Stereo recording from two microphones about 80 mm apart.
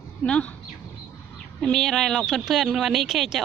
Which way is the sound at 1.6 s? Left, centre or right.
Centre.